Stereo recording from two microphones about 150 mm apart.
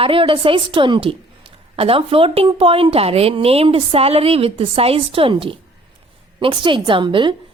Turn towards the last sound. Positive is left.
turn(degrees=-30)  # may be behind; listen again after turning